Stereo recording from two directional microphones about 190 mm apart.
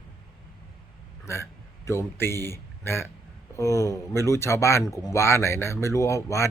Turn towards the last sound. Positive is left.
turn(degrees=15)  # may be behind; listen again after turning